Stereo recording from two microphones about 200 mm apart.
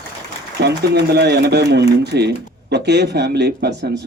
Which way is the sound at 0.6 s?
55° right (ahead or behind).